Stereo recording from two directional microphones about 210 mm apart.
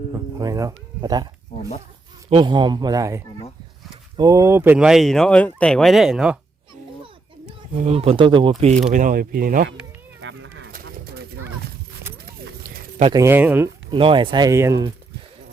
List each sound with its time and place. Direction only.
0.3 s speech: 15° right (ahead or behind)
2.3 s speech: 20° right (ahead or behind); by 6.4 s 5° right (ahead or behind)
7.8 s speech: 30° right (ahead or behind)
8.9 s speech: 40° right (ahead or behind)
10.2 s a sound: 65° right (ahead or behind)
10.7 s bird: 45° right (ahead or behind)
12.1 s a sound: 50° right (ahead or behind)
13.1 s speech: 10° right (ahead or behind)
13.9 s speech: 25° right (ahead or behind)